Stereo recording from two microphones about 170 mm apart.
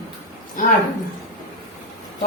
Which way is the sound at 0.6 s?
50° left (ahead or behind).